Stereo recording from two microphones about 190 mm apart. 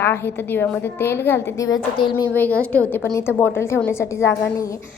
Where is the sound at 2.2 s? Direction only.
10° left (ahead or behind).